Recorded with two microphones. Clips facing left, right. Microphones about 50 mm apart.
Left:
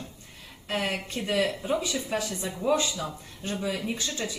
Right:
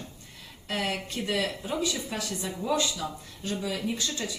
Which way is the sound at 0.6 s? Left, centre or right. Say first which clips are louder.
Left 1 dB; left.